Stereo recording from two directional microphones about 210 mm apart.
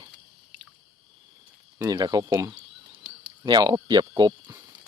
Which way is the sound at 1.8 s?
20° right (ahead or behind).